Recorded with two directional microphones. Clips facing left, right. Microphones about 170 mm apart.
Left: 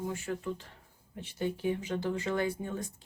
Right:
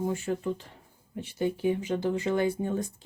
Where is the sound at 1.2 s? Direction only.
10° right (ahead or behind).